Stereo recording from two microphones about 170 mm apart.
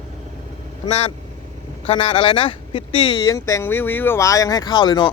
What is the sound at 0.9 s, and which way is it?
Speech, 40° left (ahead or behind).